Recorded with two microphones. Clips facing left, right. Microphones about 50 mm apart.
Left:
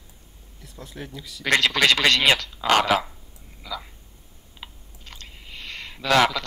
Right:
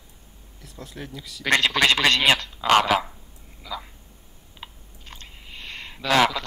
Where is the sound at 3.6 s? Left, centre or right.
Centre.